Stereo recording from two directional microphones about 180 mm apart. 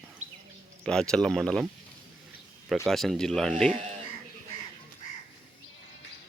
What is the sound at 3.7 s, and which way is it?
Speech, 40° right (ahead or behind).